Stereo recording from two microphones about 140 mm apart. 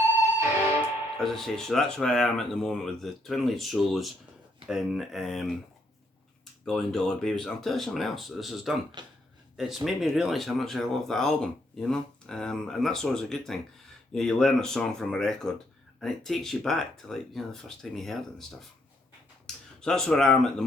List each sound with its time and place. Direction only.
1.2 s speech: 5° left (ahead or behind)
6.7 s speech: 5° left (ahead or behind)
9.0 s speech: 30° right (ahead or behind)
9.6 s speech: centre (ahead or behind)
19.8 s speech: 5° left (ahead or behind)